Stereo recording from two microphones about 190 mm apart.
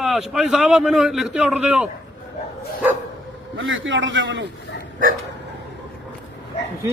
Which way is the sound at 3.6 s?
85° right.